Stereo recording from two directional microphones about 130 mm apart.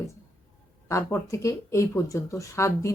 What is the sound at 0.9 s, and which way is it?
Speech, 25° left (ahead or behind).